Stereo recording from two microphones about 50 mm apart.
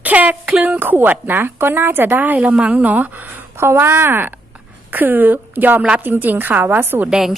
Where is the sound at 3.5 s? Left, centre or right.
Right.